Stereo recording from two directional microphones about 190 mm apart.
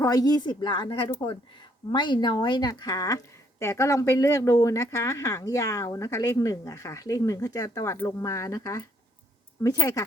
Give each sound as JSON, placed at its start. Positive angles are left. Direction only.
{"t": 0.0, "sound": "a woman's voice", "side_deg": 20}